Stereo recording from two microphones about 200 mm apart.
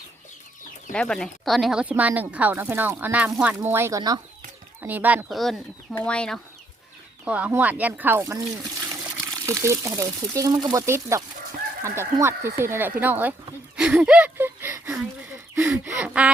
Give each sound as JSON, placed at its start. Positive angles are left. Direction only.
{"t": 0.9, "sound": "speech", "side_deg": 5}
{"t": 7.3, "sound": "speech", "side_deg": -5}
{"t": 8.9, "sound": "trickle", "side_deg": -5}
{"t": 9.3, "sound": "speech", "side_deg": -15}
{"t": 15.5, "sound": "gasp", "side_deg": -10}